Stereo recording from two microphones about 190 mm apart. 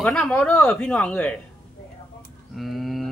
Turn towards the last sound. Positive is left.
turn(degrees=0)  # may be behind; listen again after turning